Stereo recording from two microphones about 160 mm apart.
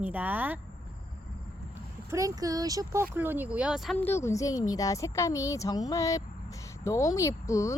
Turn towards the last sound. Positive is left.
turn(degrees=20)  # may be behind; listen again after turning